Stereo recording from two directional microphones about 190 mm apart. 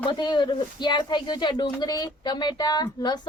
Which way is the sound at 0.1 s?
25° left (ahead or behind).